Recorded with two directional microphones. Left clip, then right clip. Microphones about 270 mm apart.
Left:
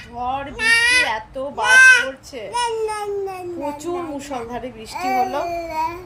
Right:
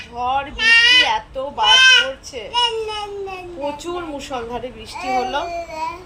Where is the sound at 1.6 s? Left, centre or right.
Centre.